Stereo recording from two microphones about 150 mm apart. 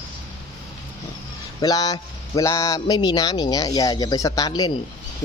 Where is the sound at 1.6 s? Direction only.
25° left (ahead or behind).